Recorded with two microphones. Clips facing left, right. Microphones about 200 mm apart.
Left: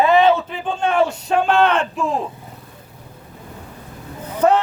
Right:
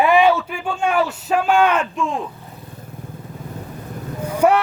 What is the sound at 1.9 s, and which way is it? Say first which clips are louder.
Speech: left 2 dB; 35° left (ahead or behind).